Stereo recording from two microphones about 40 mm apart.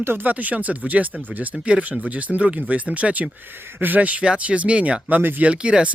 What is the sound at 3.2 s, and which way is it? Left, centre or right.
Speech, right.